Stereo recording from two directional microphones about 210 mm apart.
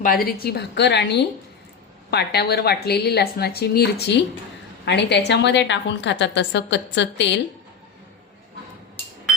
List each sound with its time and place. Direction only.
0.0 s a woman's voice: 45° left (ahead or behind)